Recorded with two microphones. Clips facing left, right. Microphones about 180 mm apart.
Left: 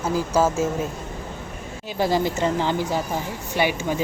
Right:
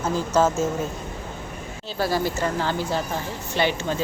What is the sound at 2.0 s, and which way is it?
Speech, 20° left (ahead or behind).